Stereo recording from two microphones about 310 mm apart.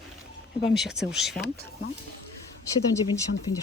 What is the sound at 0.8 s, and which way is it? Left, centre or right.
Speech, centre.